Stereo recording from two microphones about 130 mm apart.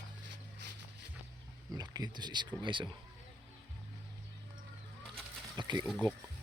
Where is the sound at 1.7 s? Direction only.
30° right (ahead or behind).